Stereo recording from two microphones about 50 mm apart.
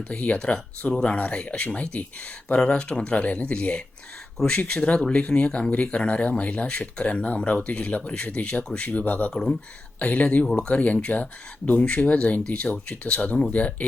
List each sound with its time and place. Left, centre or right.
0.1 s speech: left
4.4 s speech: centre
4.7 s speech: centre
9.3 s speech: centre
10.0 s speech: left
13.5 s speech: left